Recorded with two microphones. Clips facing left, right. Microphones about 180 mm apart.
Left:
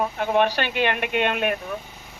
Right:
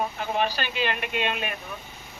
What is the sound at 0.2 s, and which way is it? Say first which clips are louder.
A man's voice: left 6 dB; 60° left (ahead or behind).